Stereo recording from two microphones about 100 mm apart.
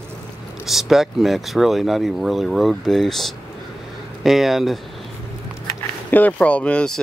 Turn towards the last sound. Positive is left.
turn(degrees=10)  # may be behind; listen again after turning